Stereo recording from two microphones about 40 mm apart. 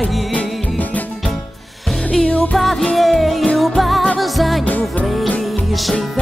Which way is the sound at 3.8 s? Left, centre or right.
Centre.